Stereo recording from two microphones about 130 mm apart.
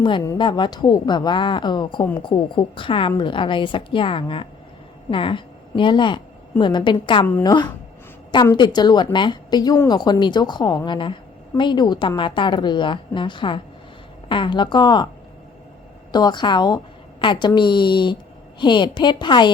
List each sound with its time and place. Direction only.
0.3 s a woman's voice: 35° left (ahead or behind)
16.1 s a woman's voice: 35° left (ahead or behind)